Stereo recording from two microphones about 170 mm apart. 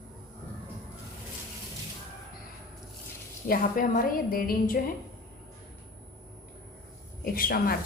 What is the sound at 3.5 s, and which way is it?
A woman's voice, 55° left (ahead or behind).